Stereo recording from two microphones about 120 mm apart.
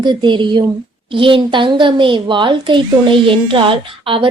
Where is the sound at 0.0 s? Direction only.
40° right (ahead or behind).